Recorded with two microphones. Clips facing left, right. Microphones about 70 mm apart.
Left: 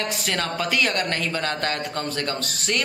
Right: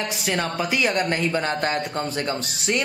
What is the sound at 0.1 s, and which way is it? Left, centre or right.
A man's voice, centre.